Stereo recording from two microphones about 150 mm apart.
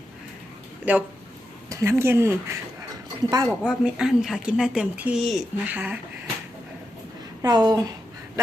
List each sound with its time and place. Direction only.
0.9 s speech: 10° right (ahead or behind)
2.9 s a sound: 25° right (ahead or behind)
3.6 s speech: 5° right (ahead or behind)
7.4 s speech: 25° right (ahead or behind)